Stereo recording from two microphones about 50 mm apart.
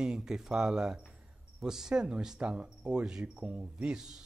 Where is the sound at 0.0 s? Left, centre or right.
Centre.